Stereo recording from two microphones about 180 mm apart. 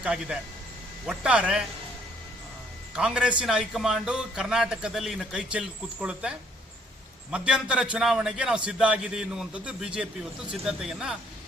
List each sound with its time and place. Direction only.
0.0 s a man's voice: 5° right (ahead or behind)
2.9 s a man's voice: 5° right (ahead or behind)